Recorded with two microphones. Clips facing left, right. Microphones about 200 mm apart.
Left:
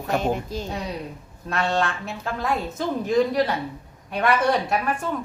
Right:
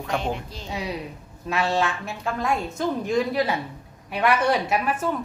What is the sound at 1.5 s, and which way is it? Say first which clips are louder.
A woman's voice: even; 5° right (ahead or behind).